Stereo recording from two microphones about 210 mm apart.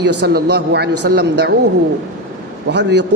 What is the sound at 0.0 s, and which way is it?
A man's voice, 55° right (ahead or behind).